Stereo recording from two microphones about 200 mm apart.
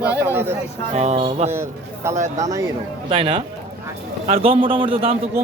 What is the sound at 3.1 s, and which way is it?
A man's voice, 25° right (ahead or behind).